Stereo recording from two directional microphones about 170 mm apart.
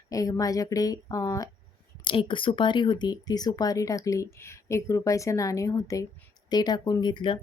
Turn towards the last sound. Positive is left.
turn(degrees=30)  # may be behind; listen again after turning